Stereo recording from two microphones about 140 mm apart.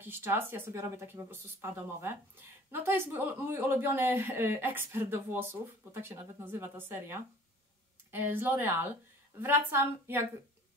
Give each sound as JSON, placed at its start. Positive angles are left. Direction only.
{"t": 0.0, "sound": "speech", "side_deg": -15}